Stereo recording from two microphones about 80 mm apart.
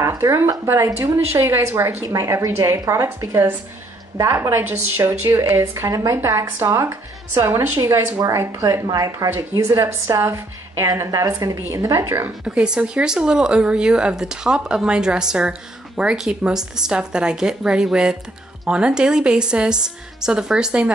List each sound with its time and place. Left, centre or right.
0.0 s a woman's voice: right
2.0 s a woman's voice: right
9.3 s a woman's voice: right
10.9 s a woman's voice: right
12.4 s a woman's voice: centre